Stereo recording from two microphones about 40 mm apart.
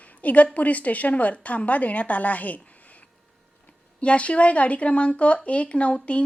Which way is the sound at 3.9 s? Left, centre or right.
Left.